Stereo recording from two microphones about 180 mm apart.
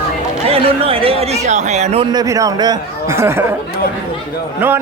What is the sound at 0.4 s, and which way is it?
Speech, 30° right (ahead or behind).